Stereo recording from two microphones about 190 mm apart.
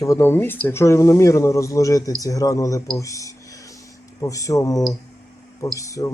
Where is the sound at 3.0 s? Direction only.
15° left (ahead or behind).